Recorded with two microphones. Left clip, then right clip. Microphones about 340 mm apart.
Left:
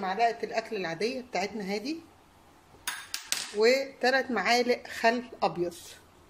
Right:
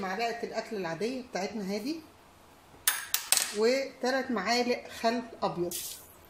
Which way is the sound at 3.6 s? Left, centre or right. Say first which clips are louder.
Left 6 dB; left.